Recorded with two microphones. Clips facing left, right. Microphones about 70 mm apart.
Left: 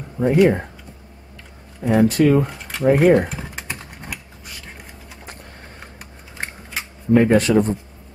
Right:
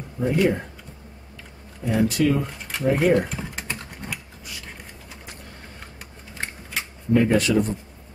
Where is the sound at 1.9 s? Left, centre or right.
Left.